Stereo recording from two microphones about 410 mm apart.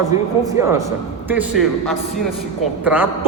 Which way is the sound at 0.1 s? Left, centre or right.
Centre.